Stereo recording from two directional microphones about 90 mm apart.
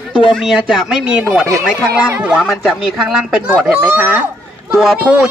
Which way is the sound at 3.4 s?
20° right (ahead or behind).